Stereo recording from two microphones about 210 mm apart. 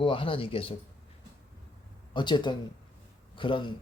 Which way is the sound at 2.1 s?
20° left (ahead or behind).